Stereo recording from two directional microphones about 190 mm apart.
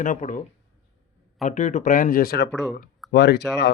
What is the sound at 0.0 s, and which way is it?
Speech, 40° left (ahead or behind).